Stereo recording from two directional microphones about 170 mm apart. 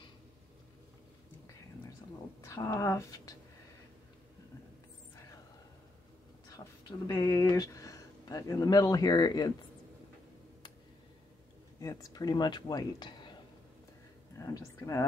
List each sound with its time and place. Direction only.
2.4 s speech: 15° left (ahead or behind)
6.5 s speech: 20° left (ahead or behind)
11.8 s speech: 20° left (ahead or behind)
14.4 s speech: 20° left (ahead or behind)